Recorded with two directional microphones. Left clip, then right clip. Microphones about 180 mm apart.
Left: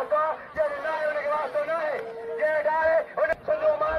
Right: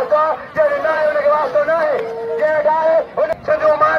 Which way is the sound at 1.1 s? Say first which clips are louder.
Right 12 dB; 20° left (ahead or behind).